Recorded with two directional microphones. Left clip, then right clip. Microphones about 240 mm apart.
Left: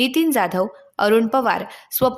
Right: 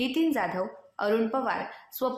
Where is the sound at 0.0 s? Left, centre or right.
Left.